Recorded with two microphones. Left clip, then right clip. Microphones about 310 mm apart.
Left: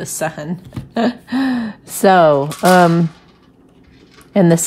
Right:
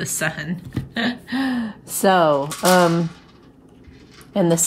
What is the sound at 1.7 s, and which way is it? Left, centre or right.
Speech, right.